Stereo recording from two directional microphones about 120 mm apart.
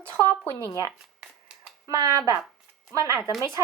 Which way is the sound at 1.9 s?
30° right (ahead or behind).